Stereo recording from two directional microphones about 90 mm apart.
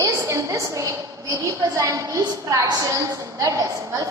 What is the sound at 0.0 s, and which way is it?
A woman's voice, 35° right (ahead or behind).